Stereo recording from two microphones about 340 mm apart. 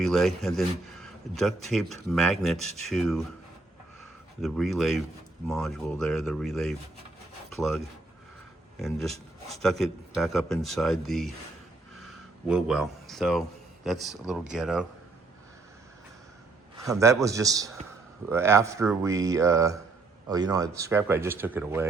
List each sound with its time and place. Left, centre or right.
0.0 s speech: centre
4.4 s speech: centre
9.5 s speech: centre
11.9 s a sound: centre
13.8 s speech: centre
16.8 s speech: centre